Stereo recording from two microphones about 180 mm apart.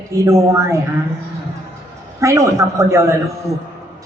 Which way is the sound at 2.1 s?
15° right (ahead or behind).